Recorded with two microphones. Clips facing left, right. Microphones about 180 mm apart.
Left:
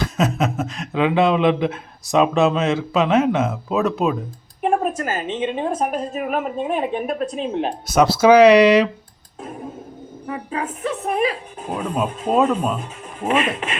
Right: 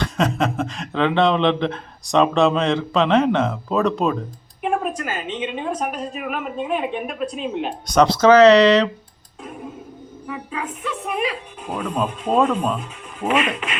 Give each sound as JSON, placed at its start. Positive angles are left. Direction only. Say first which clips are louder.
{"t": 0.0, "sound": "speech", "louder": "even", "side_deg": 5}
{"t": 4.6, "sound": "a woman's voice", "louder": "left 3 dB", "side_deg": 45}
{"t": 7.9, "sound": "speech", "louder": "even", "side_deg": 5}
{"t": 10.2, "sound": "speech", "louder": "left 3 dB", "side_deg": 40}
{"t": 11.7, "sound": "speech", "louder": "left 1 dB", "side_deg": 5}
{"t": 12.8, "sound": "speech", "louder": "even", "side_deg": 45}